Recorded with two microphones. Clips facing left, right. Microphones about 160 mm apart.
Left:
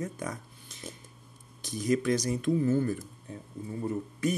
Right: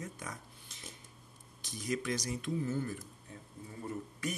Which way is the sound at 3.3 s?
25° left (ahead or behind).